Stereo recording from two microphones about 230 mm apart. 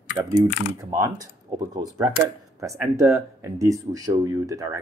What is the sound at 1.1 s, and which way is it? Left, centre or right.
Speech, centre.